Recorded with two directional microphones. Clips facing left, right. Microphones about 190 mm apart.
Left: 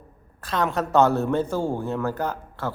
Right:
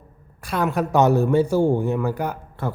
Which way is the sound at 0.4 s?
10° right (ahead or behind).